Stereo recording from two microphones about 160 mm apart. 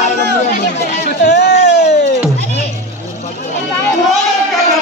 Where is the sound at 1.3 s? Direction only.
90° left.